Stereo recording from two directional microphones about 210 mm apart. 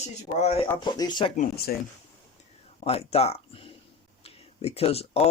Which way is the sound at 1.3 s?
45° left (ahead or behind).